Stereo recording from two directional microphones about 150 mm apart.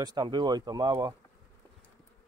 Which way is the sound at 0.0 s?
30° right (ahead or behind).